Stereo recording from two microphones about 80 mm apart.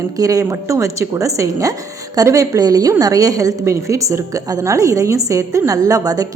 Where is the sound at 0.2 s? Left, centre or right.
Right.